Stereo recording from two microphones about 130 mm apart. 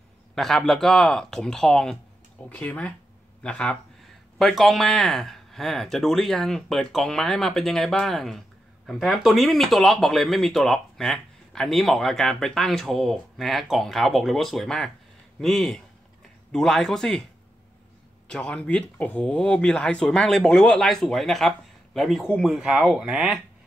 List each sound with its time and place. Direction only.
0.3 s speech: 5° left (ahead or behind)
18.3 s speech: 5° left (ahead or behind)